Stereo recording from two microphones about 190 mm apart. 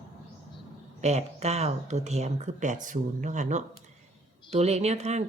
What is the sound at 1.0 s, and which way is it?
Speech, 35° right (ahead or behind).